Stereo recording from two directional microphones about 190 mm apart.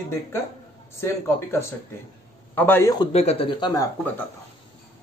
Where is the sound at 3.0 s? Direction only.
35° left (ahead or behind).